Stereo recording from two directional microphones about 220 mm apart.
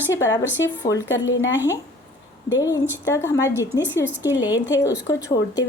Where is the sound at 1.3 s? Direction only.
55° left (ahead or behind).